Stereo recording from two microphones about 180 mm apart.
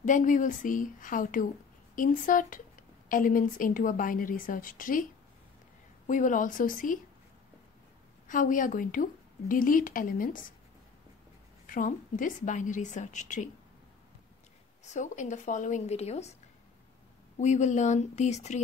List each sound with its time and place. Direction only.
0.0 s speech: 45° left (ahead or behind)
6.0 s speech: 45° left (ahead or behind)
8.3 s speech: 45° left (ahead or behind)
11.6 s speech: 45° left (ahead or behind)
14.9 s speech: 40° left (ahead or behind)
17.4 s speech: 40° left (ahead or behind)